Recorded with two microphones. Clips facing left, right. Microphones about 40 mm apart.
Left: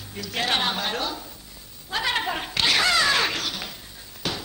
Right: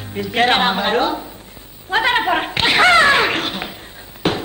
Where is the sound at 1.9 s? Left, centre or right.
Right.